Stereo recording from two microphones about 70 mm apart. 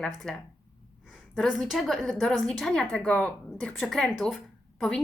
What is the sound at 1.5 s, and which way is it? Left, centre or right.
Speech, centre.